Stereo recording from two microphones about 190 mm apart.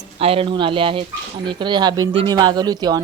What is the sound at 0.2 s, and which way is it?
A woman's voice, 30° right (ahead or behind).